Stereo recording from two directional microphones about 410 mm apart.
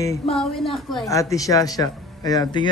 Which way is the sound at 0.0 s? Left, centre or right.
Centre.